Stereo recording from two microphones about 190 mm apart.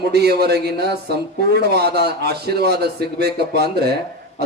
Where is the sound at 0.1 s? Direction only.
60° right (ahead or behind).